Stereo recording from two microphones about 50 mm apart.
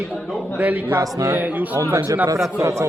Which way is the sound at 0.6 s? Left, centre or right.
Right.